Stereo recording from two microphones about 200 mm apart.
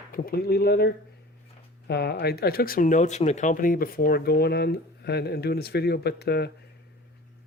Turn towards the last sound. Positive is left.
turn(degrees=55)  # may be behind; listen again after turning